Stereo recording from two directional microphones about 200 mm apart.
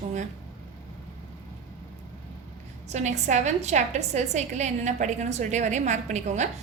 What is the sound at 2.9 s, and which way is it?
A woman's voice, 35° right (ahead or behind).